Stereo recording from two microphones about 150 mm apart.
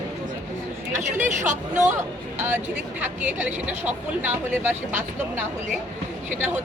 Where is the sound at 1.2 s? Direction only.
55° right (ahead or behind).